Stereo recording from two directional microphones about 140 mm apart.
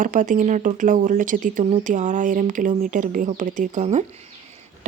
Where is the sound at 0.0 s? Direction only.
70° right (ahead or behind).